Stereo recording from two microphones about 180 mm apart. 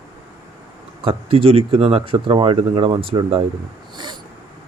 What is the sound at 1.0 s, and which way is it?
Speech, 30° right (ahead or behind).